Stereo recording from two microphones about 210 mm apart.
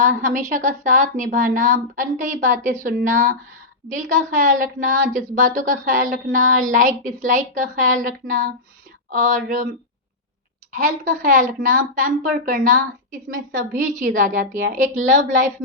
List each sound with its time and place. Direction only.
0.0 s speech: 40° right (ahead or behind)
10.7 s speech: 45° right (ahead or behind)